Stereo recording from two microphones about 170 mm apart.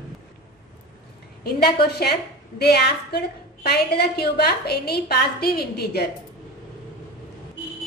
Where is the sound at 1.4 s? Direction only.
70° left (ahead or behind).